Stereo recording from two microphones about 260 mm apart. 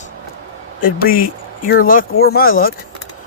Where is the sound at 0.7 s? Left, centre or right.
Left.